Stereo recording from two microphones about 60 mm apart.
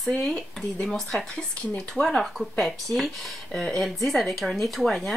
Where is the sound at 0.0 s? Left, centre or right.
Centre.